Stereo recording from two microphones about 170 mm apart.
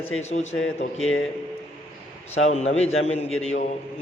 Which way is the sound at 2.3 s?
40° left (ahead or behind).